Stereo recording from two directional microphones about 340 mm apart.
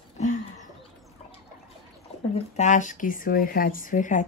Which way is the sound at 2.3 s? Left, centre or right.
Left.